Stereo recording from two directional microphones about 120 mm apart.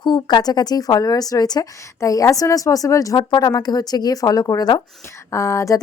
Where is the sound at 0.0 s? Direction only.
35° left (ahead or behind).